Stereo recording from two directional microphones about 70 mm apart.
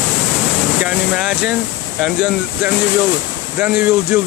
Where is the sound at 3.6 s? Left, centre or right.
Right.